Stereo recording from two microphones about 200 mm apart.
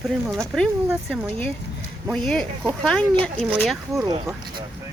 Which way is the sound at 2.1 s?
5° left (ahead or behind).